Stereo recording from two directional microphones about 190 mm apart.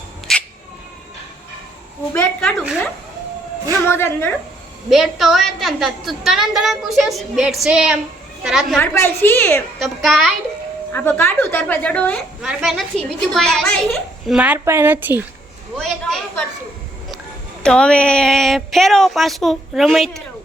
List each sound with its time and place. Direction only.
0.3 s a sound: centre (ahead or behind)
2.1 s a sound: 5° left (ahead or behind)
3.8 s a woman's voice: 15° left (ahead or behind)
4.9 s speech: centre (ahead or behind)
8.8 s a woman's voice: 10° left (ahead or behind)
9.8 s speech: centre (ahead or behind)
10.9 s a woman's voice: 10° left (ahead or behind); by 15.2 s 10° right (ahead or behind)
15.7 s a sound: centre (ahead or behind)
17.6 s speech: 5° left (ahead or behind)